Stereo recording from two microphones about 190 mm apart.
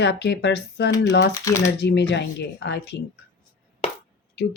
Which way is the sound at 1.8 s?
60° left (ahead or behind).